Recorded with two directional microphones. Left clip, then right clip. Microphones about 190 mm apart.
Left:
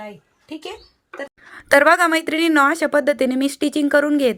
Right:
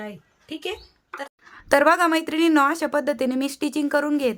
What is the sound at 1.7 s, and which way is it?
A woman's voice, 15° left (ahead or behind).